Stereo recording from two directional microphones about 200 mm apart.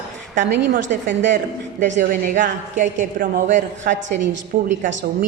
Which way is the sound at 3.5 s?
60° right (ahead or behind).